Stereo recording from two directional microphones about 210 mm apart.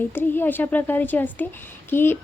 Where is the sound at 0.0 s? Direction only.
10° left (ahead or behind).